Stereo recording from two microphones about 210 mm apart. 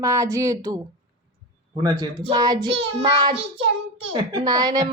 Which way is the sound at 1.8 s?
15° right (ahead or behind).